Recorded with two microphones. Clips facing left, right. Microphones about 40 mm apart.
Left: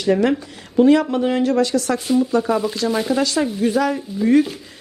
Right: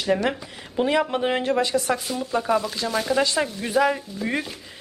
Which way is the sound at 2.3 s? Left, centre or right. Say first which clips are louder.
Left 5 dB; centre.